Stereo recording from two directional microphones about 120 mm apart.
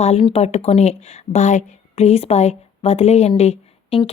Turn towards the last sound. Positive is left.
turn(degrees=55)  # may be behind; listen again after turning